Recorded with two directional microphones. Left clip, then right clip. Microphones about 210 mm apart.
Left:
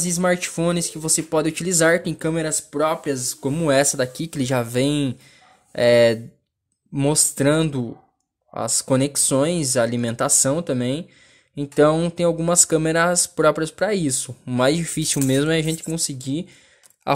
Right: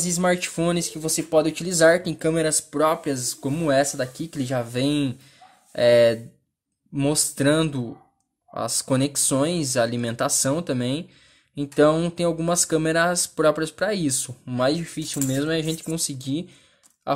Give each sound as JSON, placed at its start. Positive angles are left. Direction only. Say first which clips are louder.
{"t": 0.0, "sound": "speech", "louder": "left 1 dB", "side_deg": 10}
{"t": 14.5, "sound": "speech", "louder": "left 3 dB", "side_deg": 25}